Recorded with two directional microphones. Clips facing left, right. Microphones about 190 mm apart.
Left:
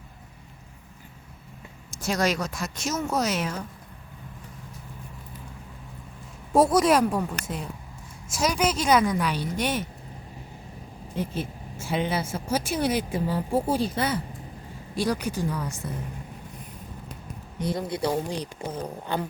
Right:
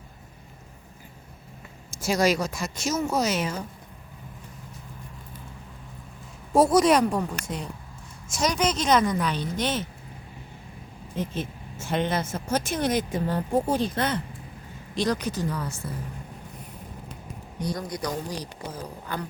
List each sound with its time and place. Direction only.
2.0 s speech: 5° right (ahead or behind)
6.6 s speech: centre (ahead or behind)
11.2 s speech: 10° left (ahead or behind)
17.6 s speech: 25° left (ahead or behind)